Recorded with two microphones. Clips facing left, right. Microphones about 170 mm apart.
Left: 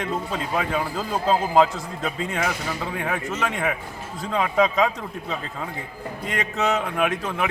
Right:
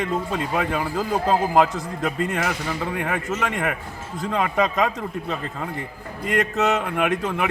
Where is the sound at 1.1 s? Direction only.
15° right (ahead or behind).